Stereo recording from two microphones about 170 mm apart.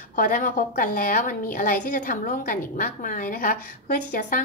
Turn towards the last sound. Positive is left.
turn(degrees=55)  # may be behind; listen again after turning